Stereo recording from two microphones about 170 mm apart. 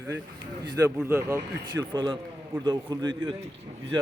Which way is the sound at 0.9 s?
10° right (ahead or behind).